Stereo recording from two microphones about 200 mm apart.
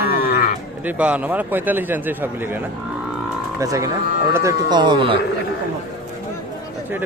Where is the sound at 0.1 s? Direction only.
45° left (ahead or behind).